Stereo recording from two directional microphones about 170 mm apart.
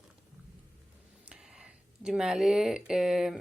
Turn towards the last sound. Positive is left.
turn(degrees=0)  # may be behind; listen again after turning